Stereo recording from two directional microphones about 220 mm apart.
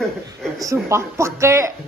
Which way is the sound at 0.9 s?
15° right (ahead or behind).